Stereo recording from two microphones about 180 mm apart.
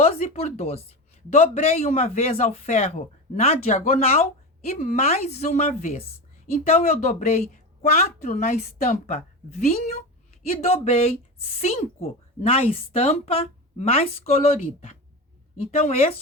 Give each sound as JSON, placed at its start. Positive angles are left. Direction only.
{"t": 0.3, "sound": "a woman's voice", "side_deg": 35}
{"t": 15.7, "sound": "a woman's voice", "side_deg": 35}